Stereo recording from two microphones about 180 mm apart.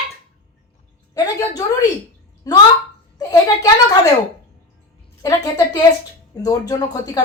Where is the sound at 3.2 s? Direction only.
20° left (ahead or behind).